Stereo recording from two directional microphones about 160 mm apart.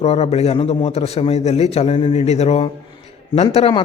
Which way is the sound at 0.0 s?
40° left (ahead or behind).